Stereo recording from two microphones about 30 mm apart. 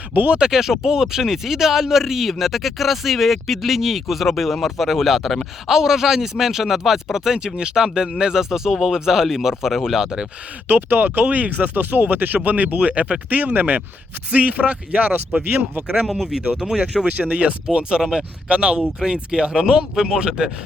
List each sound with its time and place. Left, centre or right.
0.5 s speech: centre
5.6 s speech: centre
7.3 s speech: right
8.2 s speech: centre
10.7 s speech: right
12.4 s speech: right
16.0 s speech: centre
16.3 s speech: right
17.1 s speech: right
17.7 s speech: right
18.4 s speech: right
18.9 s speech: right